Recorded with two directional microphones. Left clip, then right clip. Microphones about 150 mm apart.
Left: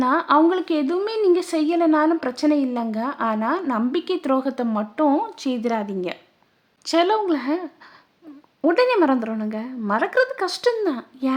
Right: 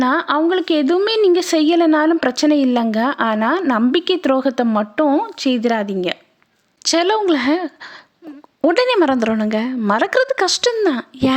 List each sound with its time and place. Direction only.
0.0 s a woman's voice: 25° right (ahead or behind)